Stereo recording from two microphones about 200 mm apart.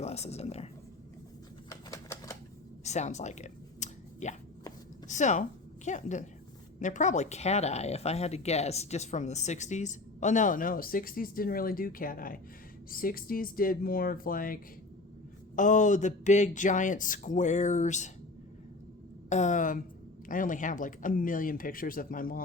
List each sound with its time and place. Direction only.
0.0 s speech: 30° left (ahead or behind)
1.7 s typewriter: 15° left (ahead or behind)
2.8 s a sound: 35° left (ahead or behind)
5.0 s speech: 35° left (ahead or behind)
19.3 s speech: 35° left (ahead or behind)